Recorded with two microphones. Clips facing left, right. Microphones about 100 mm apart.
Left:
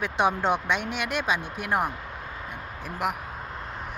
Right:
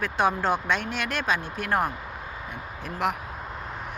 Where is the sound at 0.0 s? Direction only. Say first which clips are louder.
Even; 15° left (ahead or behind).